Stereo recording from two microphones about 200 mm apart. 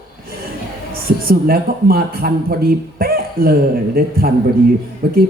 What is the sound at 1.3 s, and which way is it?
A man's voice, 50° right (ahead or behind).